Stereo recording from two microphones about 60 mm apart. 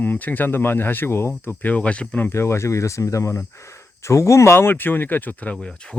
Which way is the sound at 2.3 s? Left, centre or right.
Left.